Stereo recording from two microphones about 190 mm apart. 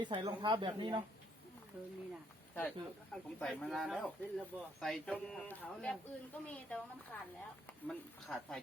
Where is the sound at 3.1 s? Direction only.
5° left (ahead or behind).